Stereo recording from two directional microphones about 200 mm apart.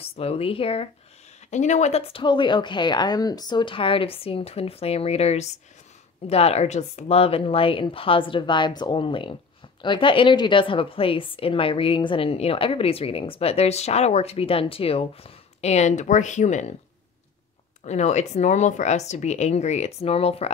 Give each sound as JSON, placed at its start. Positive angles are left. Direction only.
{"t": 0.0, "sound": "speech", "side_deg": 30}
{"t": 17.8, "sound": "speech", "side_deg": 35}